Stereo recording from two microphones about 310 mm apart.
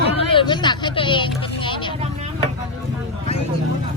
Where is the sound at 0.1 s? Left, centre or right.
Centre.